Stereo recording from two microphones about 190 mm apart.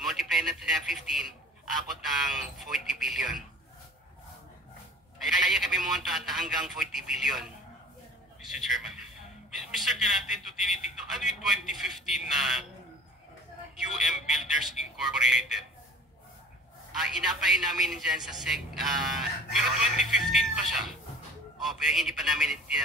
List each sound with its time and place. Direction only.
0.0 s a man's voice: centre (ahead or behind)
5.2 s a man's voice: centre (ahead or behind)
13.7 s a man's voice: centre (ahead or behind)
16.9 s a man's voice: centre (ahead or behind)